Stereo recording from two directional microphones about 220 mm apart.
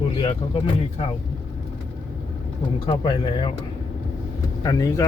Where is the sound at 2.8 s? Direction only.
20° left (ahead or behind).